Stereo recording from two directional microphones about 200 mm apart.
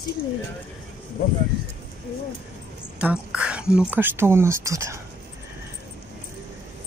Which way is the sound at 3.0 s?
5° right (ahead or behind).